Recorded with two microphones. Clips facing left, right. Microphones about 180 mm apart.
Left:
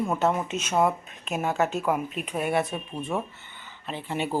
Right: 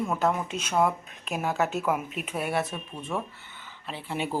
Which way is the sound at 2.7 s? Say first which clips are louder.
Left 4 dB; 25° left (ahead or behind).